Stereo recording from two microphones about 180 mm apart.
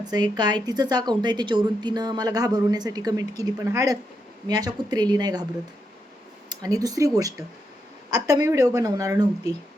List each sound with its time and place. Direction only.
0.0 s a woman's voice: 25° right (ahead or behind)
6.5 s a woman's voice: 20° right (ahead or behind)